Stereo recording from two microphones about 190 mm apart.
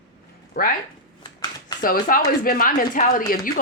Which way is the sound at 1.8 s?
50° left (ahead or behind).